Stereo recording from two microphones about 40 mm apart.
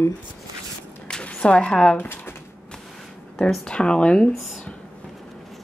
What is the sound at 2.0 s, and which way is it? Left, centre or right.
Speech, left.